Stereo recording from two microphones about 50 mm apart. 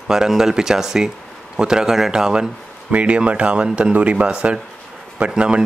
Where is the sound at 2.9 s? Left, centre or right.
Right.